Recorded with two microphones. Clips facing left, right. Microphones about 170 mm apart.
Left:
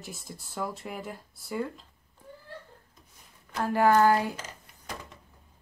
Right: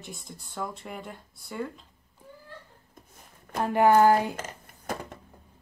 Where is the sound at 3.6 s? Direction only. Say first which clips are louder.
Right 2 dB; 20° right (ahead or behind).